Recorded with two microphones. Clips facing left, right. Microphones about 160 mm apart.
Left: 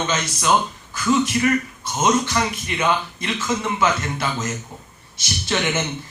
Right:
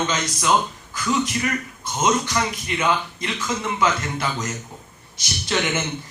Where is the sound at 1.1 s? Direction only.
25° left (ahead or behind).